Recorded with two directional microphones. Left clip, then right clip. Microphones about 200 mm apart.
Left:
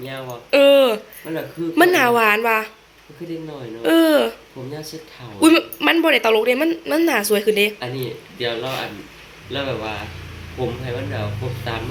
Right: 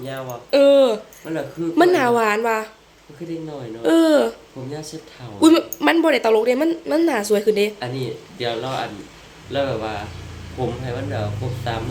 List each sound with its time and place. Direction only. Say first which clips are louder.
0.1 s speech: left 1 dB; 5° right (ahead or behind)
3.8 s speech: even; 10° right (ahead or behind)
7.9 s speech: even; centre (ahead or behind)